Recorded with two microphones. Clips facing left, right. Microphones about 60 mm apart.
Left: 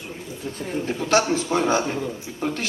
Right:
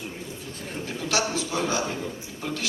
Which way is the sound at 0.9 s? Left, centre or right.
Left.